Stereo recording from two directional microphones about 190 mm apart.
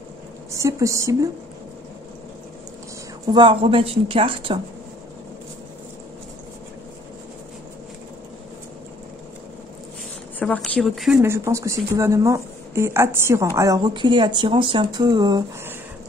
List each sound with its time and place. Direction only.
0.5 s speech: 15° right (ahead or behind)
3.3 s speech: 25° right (ahead or behind)
10.4 s speech: 5° left (ahead or behind); by 15.7 s 20° right (ahead or behind)